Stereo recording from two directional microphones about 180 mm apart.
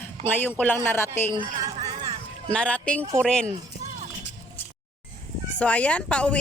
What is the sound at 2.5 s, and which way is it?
Speech, 5° left (ahead or behind).